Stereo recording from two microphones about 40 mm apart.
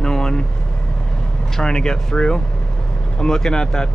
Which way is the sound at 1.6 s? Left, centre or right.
Centre.